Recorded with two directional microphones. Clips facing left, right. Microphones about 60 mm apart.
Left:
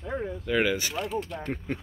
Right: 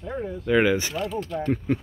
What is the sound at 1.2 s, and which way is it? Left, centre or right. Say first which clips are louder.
Speech: right 6 dB; centre.